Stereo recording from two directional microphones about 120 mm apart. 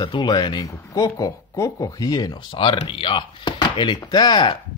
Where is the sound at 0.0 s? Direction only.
40° left (ahead or behind).